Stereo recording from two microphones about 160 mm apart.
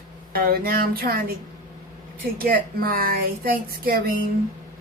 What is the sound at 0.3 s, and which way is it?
Speech, 65° right (ahead or behind).